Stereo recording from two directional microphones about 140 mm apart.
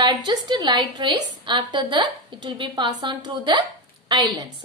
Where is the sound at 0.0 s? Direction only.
35° right (ahead or behind).